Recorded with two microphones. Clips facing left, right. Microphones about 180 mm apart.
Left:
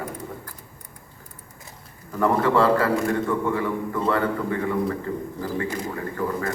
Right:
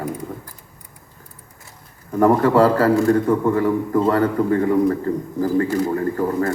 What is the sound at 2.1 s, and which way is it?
A man's voice, 40° right (ahead or behind).